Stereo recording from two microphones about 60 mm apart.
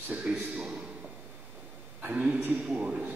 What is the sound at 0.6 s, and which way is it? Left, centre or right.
Speech, centre.